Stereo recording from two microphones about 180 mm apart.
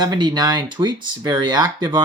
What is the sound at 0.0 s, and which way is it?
Speech, 25° right (ahead or behind).